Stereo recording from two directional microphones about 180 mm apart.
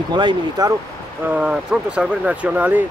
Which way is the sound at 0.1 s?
25° right (ahead or behind).